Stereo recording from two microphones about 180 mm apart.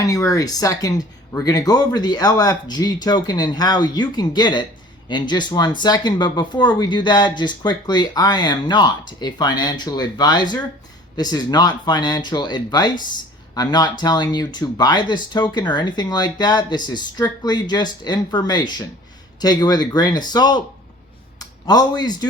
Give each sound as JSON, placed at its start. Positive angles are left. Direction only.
{"t": 0.0, "sound": "speech", "side_deg": 20}